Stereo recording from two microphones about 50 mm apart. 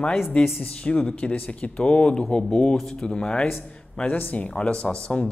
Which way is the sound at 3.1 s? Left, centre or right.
Centre.